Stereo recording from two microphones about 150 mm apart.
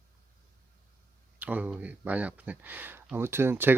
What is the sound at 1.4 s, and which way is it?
Speech, 10° right (ahead or behind).